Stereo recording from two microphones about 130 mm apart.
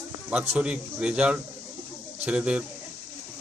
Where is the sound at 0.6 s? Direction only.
5° right (ahead or behind).